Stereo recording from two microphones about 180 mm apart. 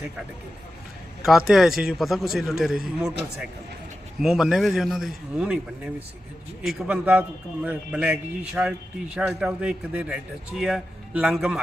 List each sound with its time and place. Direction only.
1.2 s a man's voice: centre (ahead or behind)
4.2 s a man's voice: centre (ahead or behind)